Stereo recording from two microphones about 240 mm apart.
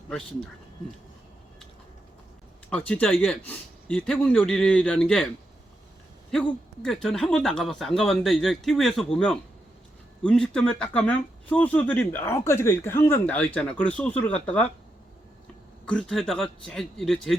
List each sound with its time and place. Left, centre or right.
2.6 s speech: centre
6.8 s speech: centre
15.9 s speech: centre